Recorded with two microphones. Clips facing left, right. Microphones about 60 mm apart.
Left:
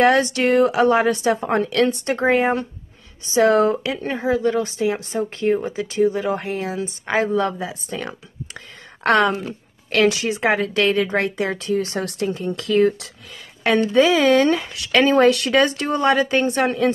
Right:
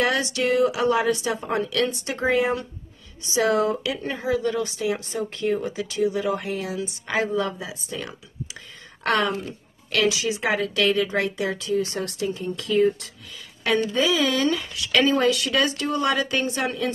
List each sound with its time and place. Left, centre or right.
0.0 s speech: left
14.0 s speech: left